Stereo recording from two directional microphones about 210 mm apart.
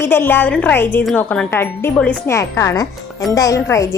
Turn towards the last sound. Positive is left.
turn(degrees=15)  # may be behind; listen again after turning